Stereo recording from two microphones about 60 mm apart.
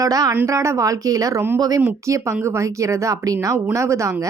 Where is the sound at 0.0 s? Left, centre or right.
Right.